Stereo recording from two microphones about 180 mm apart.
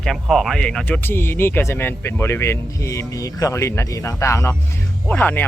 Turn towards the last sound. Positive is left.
turn(degrees=10)  # may be behind; listen again after turning